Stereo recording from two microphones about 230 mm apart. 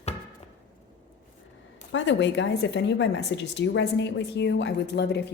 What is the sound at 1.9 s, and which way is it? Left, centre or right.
A woman's voice, left.